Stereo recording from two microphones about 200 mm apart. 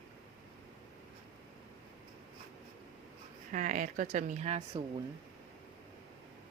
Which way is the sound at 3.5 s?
40° right (ahead or behind).